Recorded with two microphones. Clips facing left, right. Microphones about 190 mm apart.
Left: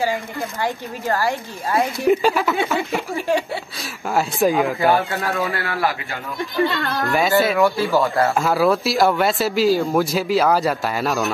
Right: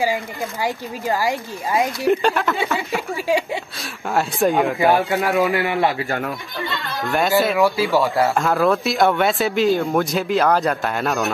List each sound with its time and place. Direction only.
0.1 s speech: 10° right (ahead or behind)
2.0 s speech: centre (ahead or behind)
4.1 s speech: centre (ahead or behind)
4.7 s speech: 15° right (ahead or behind)
6.7 s speech: 50° left (ahead or behind)
7.1 s speech: centre (ahead or behind)